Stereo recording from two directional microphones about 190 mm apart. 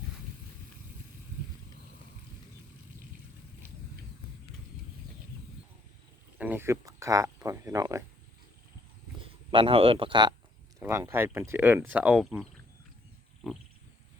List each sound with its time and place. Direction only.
6.4 s speech: 10° right (ahead or behind)
9.2 s a man's voice: 30° right (ahead or behind); by 12.5 s centre (ahead or behind)
13.4 s wild animals: centre (ahead or behind)